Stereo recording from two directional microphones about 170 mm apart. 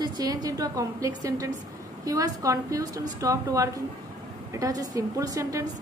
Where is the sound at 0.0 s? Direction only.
25° right (ahead or behind).